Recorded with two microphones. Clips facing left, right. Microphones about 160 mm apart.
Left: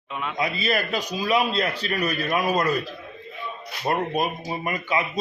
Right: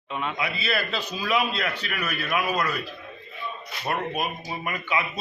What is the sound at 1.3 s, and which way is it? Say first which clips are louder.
A man's voice: left 3 dB; 35° left (ahead or behind).